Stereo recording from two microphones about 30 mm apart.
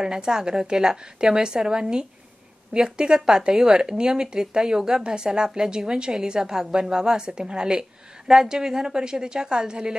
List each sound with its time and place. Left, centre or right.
0.0 s a woman's voice: right
5.0 s a woman's voice: right
8.5 s a woman's voice: centre
8.8 s a woman's voice: right